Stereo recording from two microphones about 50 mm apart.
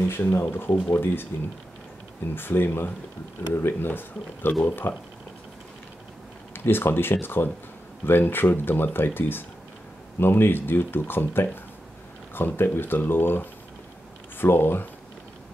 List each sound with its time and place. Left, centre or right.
0.1 s speech: left
2.3 s speech: left
6.5 s speech: left